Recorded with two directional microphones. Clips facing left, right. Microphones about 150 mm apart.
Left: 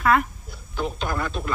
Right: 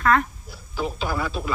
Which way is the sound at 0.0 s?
5° left (ahead or behind).